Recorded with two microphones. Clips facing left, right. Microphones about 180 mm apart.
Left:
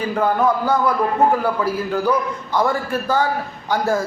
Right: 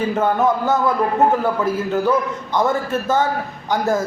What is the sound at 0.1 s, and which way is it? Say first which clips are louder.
A man's voice: left 2 dB; 25° right (ahead or behind).